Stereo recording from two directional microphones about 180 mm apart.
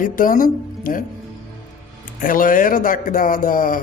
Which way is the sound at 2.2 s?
50° left (ahead or behind).